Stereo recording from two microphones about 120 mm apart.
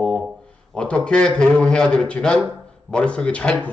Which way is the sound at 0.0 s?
5° left (ahead or behind).